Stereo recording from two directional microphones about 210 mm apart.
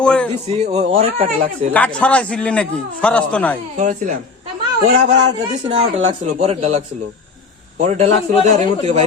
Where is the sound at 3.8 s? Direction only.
40° right (ahead or behind).